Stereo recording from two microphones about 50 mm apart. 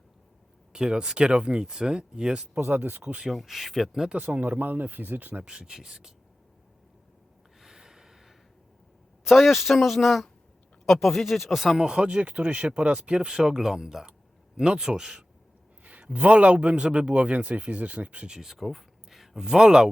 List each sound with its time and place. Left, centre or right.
0.7 s speech: centre
2.6 s speech: right
3.3 s speech: centre
4.4 s speech: right
5.5 s speech: centre
7.6 s snort: centre
9.2 s speech: centre
15.8 s a man's voice: right
18.3 s speech: centre